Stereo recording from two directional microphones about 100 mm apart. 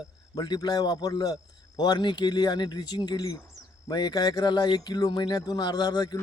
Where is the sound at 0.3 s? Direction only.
45° left (ahead or behind).